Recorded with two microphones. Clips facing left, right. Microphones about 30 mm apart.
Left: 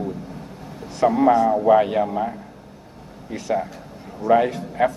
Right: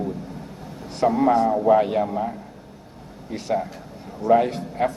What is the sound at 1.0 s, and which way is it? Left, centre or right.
Speech, left.